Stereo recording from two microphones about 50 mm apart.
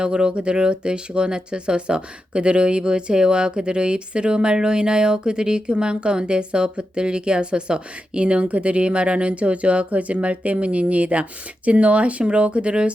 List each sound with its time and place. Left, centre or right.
0.0 s speech: centre